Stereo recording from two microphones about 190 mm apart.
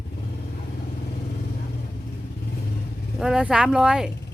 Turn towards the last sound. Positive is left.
turn(degrees=-5)  # may be behind; listen again after turning